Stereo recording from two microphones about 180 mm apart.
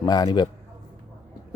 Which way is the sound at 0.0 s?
20° left (ahead or behind).